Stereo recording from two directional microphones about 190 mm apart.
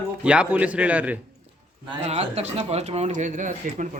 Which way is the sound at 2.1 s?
35° right (ahead or behind).